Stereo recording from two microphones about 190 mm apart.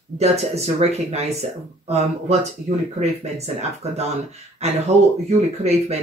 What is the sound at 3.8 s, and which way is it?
Speech, 35° right (ahead or behind).